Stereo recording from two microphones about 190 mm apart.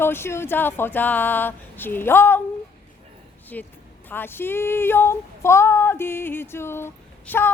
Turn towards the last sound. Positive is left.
turn(degrees=10)  # may be behind; listen again after turning